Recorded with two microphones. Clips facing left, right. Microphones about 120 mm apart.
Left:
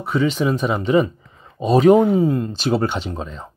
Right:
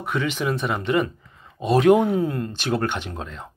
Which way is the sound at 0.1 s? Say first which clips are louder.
Left 6 dB; 5° left (ahead or behind).